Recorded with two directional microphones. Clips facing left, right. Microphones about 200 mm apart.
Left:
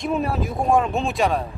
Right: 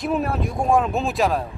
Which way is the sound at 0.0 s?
Centre (ahead or behind).